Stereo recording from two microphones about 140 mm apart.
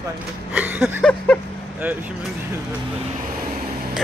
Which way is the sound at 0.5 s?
10° right (ahead or behind).